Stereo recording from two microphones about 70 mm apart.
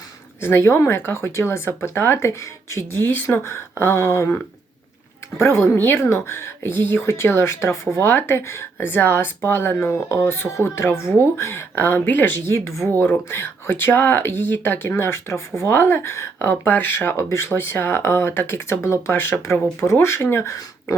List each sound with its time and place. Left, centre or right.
0.4 s speech: left
5.4 s speech: left
19.1 s speech: left
19.9 s speech: left